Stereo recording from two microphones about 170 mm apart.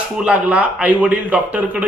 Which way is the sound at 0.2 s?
5° right (ahead or behind).